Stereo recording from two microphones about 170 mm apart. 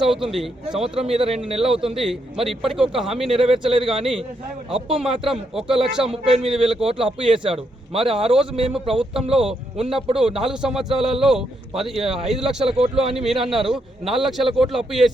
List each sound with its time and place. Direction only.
0.0 s a man's voice: centre (ahead or behind)
0.8 s a man's voice: 35° right (ahead or behind)
1.6 s a man's voice: 5° right (ahead or behind)
3.2 s a man's voice: 35° right (ahead or behind)
5.2 s a man's voice: centre (ahead or behind)
6.1 s a man's voice: 35° right (ahead or behind)
10.2 s a man's voice: 5° right (ahead or behind)
12.7 s a man's voice: 35° right (ahead or behind)
13.1 s a man's voice: centre (ahead or behind)